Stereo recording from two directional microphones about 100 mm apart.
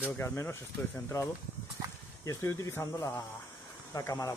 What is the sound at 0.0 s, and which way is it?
Speech, 25° left (ahead or behind).